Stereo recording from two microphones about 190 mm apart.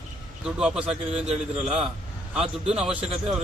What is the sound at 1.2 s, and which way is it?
Speech, 35° right (ahead or behind).